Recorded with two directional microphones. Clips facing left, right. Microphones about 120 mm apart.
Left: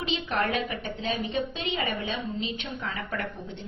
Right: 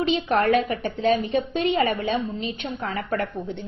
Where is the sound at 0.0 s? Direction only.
45° right (ahead or behind).